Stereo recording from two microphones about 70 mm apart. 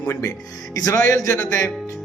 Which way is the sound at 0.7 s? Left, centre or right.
Left.